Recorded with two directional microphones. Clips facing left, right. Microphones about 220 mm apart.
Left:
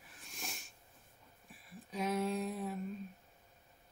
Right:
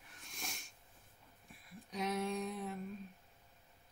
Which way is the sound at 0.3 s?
Centre (ahead or behind).